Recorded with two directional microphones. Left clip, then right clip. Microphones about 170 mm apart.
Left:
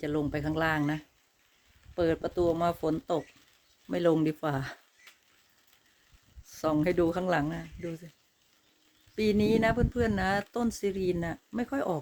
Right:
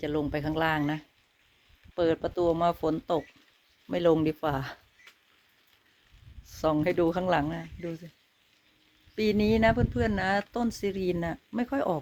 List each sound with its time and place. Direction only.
0.0 s speech: 20° left (ahead or behind)
6.4 s speech: 15° left (ahead or behind)
9.1 s speech: 10° left (ahead or behind)